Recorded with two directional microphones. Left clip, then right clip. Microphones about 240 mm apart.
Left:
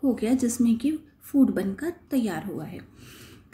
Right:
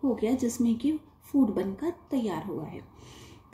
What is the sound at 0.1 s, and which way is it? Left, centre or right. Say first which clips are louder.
A woman's voice: left 2 dB; centre.